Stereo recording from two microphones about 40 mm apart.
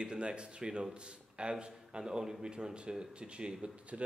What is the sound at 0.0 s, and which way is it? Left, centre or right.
A man's voice, right.